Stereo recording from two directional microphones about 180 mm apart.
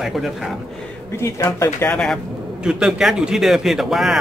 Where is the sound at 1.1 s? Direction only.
15° left (ahead or behind).